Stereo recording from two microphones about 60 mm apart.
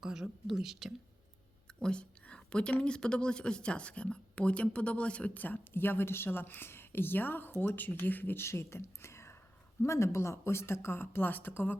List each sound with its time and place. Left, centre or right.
0.0 s speech: centre
1.8 s a woman's voice: centre; by 8.4 s left
8.4 s speech: left